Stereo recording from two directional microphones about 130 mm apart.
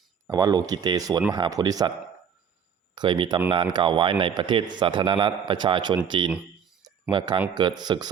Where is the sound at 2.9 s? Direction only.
40° right (ahead or behind).